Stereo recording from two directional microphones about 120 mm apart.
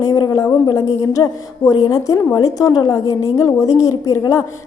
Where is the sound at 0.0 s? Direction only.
30° left (ahead or behind).